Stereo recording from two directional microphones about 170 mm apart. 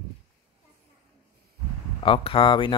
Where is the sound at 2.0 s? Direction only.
30° left (ahead or behind).